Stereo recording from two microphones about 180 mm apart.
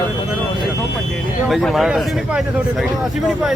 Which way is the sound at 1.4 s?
Centre (ahead or behind).